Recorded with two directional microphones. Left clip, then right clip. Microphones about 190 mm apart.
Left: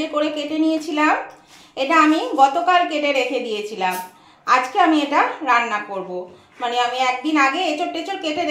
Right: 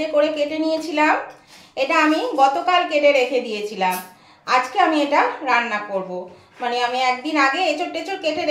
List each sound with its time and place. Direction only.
0.1 s a child's voice: 30° left (ahead or behind)